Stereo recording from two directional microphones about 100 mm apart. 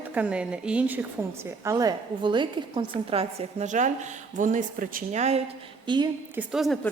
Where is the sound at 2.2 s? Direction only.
55° right (ahead or behind).